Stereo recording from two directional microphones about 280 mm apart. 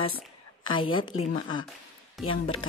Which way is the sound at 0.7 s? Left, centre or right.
Centre.